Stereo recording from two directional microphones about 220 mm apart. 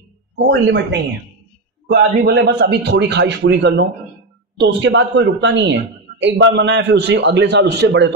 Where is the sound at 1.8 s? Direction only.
50° right (ahead or behind).